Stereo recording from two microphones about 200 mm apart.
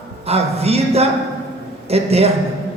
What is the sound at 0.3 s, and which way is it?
A man's voice, 30° right (ahead or behind).